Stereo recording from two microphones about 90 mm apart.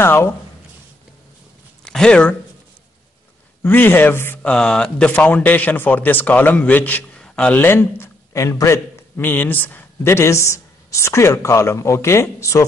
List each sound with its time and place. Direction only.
0.0 s speech: 25° left (ahead or behind)
1.9 s speech: 10° left (ahead or behind)
3.6 s speech: 20° left (ahead or behind)
7.2 s a sound: 10° left (ahead or behind)
7.6 s a man's voice: 25° left (ahead or behind)